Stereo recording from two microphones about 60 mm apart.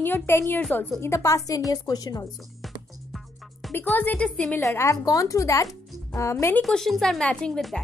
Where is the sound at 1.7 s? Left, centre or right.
Left.